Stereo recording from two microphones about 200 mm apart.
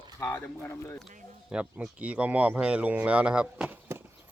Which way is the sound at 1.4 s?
5° right (ahead or behind).